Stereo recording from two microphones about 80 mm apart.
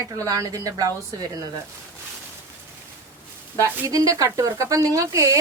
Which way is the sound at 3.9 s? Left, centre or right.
Right.